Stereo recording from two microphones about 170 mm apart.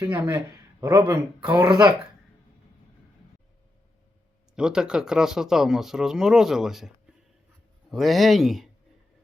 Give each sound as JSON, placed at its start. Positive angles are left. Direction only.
{"t": 0.0, "sound": "a man's voice", "side_deg": -15}
{"t": 4.5, "sound": "speech", "side_deg": -5}